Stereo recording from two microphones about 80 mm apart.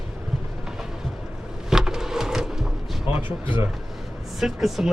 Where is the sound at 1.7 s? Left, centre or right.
Centre.